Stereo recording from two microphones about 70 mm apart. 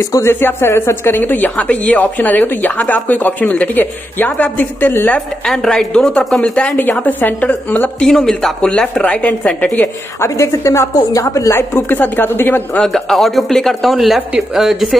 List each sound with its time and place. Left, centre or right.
0.2 s speech: left
5.4 s speech: centre
6.8 s speech: left
8.1 s speech: centre
10.2 s a woman's voice: left
11.5 s a woman's voice: left
12.8 s speech: centre